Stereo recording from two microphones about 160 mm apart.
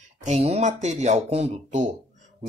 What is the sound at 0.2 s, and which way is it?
Speech, 45° right (ahead or behind).